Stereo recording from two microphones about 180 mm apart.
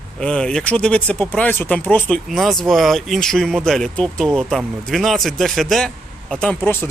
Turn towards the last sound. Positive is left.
turn(degrees=10)  # may be behind; listen again after turning